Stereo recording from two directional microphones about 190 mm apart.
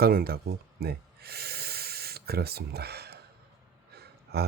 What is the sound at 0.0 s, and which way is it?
Speech, 55° right (ahead or behind).